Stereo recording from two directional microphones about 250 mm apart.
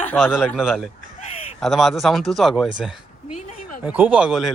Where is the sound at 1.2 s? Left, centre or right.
Left.